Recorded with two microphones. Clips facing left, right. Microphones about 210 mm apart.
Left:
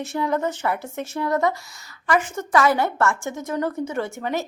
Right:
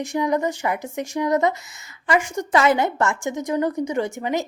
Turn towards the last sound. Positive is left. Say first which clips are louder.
# right 2 dB
turn(degrees=-15)  # may be behind; listen again after turning